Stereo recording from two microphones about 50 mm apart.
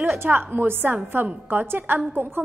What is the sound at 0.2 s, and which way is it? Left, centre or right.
A woman's voice, right.